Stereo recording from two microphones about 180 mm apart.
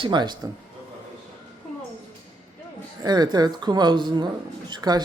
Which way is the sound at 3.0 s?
25° right (ahead or behind).